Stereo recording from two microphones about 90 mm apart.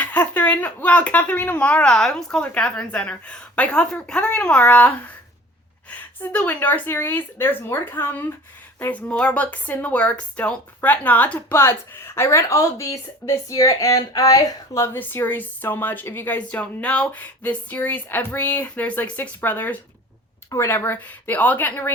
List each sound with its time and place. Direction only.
0.0 s a woman's voice: 20° left (ahead or behind); by 14.8 s 35° left (ahead or behind)
14.9 s a woman's voice: 20° left (ahead or behind)
20.5 s a woman's voice: 30° left (ahead or behind)